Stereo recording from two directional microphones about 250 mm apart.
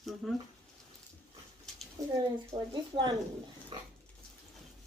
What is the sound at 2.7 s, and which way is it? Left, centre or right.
Speech, centre.